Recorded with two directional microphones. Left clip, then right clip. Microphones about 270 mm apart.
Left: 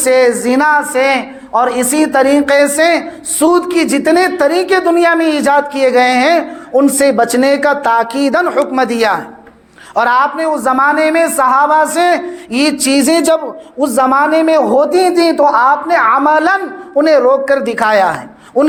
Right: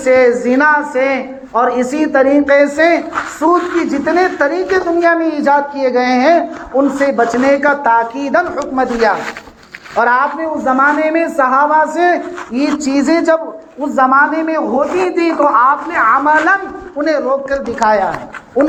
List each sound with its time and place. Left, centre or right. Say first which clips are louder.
0.0 s a woman's voice: even; left